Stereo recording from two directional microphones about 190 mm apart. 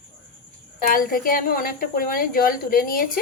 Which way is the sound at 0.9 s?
50° left (ahead or behind).